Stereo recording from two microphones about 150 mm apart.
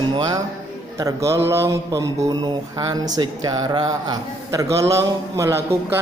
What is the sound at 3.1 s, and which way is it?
Speech, 25° right (ahead or behind).